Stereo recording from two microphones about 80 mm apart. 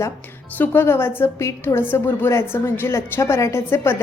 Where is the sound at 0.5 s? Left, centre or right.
Left.